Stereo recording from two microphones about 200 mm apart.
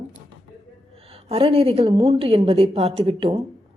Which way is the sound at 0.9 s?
30° right (ahead or behind).